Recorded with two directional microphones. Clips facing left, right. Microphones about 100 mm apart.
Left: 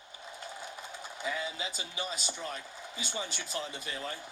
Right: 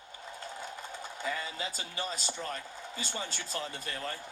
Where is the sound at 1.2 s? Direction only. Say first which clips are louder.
Even; 10° left (ahead or behind).